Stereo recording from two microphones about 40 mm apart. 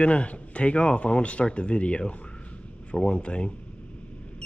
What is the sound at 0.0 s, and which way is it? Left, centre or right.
Speech, left.